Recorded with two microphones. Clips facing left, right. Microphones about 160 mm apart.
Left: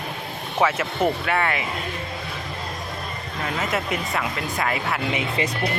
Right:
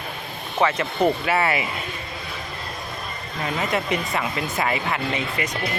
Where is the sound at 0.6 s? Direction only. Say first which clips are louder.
Right 1 dB; 5° left (ahead or behind).